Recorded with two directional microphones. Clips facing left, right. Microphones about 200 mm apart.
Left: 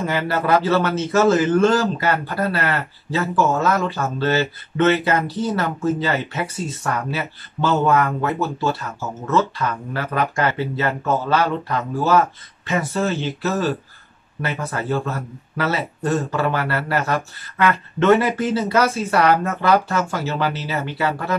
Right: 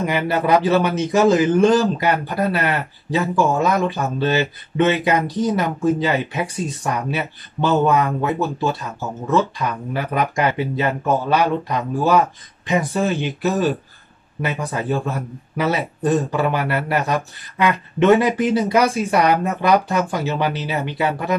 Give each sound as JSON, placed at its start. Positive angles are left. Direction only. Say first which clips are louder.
{"t": 0.0, "sound": "speech", "louder": "right 2 dB", "side_deg": -15}